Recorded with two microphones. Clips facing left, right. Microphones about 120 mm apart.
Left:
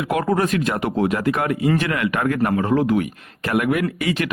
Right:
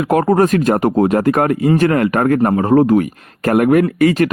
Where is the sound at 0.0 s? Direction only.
45° right (ahead or behind).